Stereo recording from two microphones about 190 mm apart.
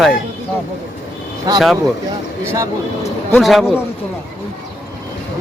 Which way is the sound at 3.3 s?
Centre (ahead or behind).